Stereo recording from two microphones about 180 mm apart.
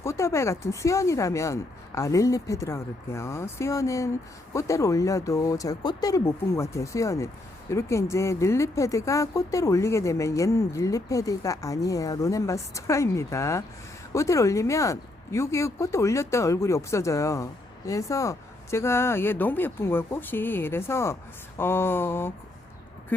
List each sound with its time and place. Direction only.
0.0 s speech: 15° left (ahead or behind)